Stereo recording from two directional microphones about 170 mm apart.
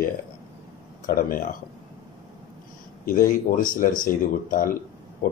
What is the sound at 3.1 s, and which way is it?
Speech, 55° left (ahead or behind).